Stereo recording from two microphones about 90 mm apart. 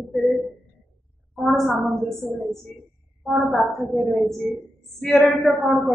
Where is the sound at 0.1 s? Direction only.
Centre (ahead or behind).